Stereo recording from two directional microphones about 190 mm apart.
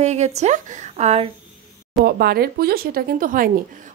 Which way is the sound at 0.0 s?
35° right (ahead or behind).